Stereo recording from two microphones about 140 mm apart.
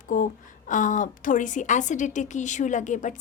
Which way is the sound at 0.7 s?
65° left (ahead or behind).